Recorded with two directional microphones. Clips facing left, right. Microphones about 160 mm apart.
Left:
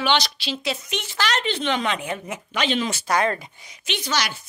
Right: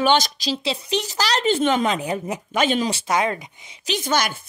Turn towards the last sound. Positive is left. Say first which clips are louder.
# right 4 dB
turn(degrees=-50)  # may be behind; listen again after turning